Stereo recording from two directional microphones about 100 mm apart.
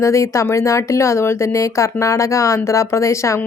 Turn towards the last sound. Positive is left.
turn(degrees=30)  # may be behind; listen again after turning